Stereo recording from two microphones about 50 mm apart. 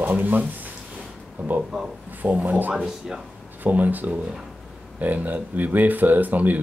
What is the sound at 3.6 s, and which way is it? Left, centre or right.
Speech, right.